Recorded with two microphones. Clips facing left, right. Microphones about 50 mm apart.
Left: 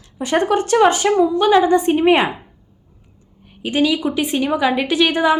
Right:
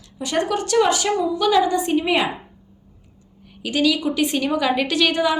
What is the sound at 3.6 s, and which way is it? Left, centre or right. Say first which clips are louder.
A woman's voice: left 2 dB; left.